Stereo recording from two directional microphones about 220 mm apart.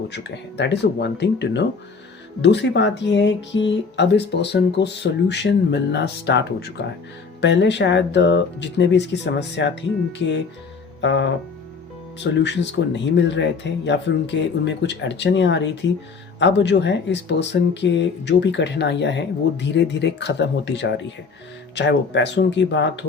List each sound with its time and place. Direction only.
0.1 s speech: 50° left (ahead or behind)
11.0 s music: 55° left (ahead or behind)
12.2 s speech: 50° left (ahead or behind)